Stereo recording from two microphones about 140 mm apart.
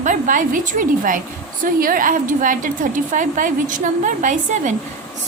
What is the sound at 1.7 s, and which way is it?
A woman's voice, 85° right.